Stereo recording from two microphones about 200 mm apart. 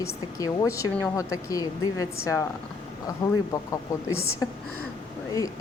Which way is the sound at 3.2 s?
20° left (ahead or behind).